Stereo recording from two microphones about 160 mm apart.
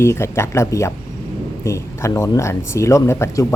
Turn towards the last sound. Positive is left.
turn(degrees=20)  # may be behind; listen again after turning